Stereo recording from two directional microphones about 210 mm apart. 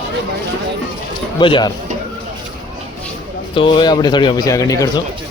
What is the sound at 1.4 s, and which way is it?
Speech, 20° left (ahead or behind).